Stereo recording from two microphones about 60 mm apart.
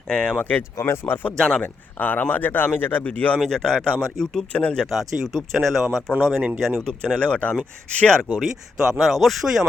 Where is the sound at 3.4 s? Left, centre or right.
Centre.